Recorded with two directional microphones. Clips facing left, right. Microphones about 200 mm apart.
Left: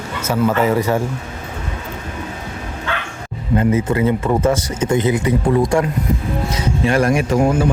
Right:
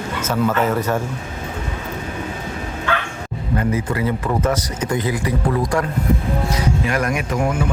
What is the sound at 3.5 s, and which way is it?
Speech, 25° left (ahead or behind).